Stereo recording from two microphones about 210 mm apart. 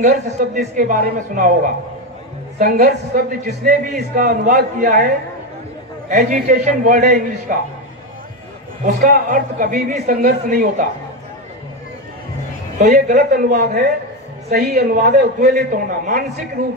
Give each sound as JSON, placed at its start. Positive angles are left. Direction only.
{"t": 0.4, "sound": "a man's voice", "side_deg": -40}
{"t": 6.0, "sound": "speech", "side_deg": -40}
{"t": 8.8, "sound": "speech", "side_deg": -40}
{"t": 12.7, "sound": "a man's voice", "side_deg": -35}